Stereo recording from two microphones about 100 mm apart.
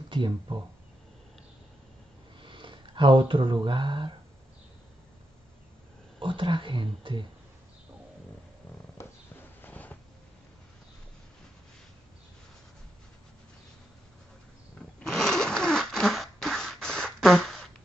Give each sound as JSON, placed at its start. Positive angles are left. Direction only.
{"t": 0.1, "sound": "speech", "side_deg": -55}
{"t": 2.4, "sound": "speech", "side_deg": -55}
{"t": 6.1, "sound": "speech", "side_deg": -55}
{"t": 9.6, "sound": "a sound", "side_deg": 15}
{"t": 15.0, "sound": "zipper", "side_deg": 5}